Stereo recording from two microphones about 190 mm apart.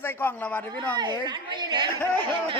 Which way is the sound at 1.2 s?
25° right (ahead or behind).